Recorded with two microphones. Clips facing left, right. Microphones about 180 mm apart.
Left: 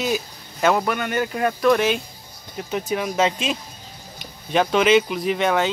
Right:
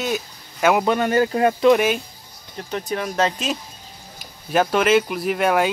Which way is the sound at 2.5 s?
5° left (ahead or behind).